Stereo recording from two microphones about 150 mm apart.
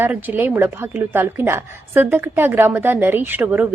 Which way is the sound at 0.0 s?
10° right (ahead or behind).